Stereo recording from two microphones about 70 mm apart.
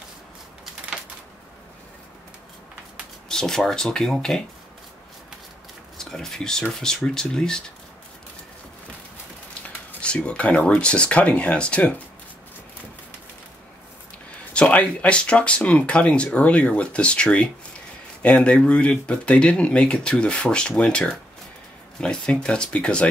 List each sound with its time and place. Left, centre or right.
3.3 s speech: centre
5.9 s speech: centre
10.0 s speech: centre
14.5 s speech: centre